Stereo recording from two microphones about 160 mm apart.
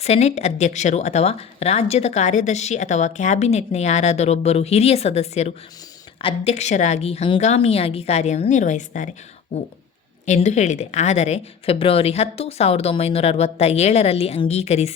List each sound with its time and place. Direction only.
0.0 s speech: 40° left (ahead or behind)
10.2 s a woman's voice: 45° left (ahead or behind)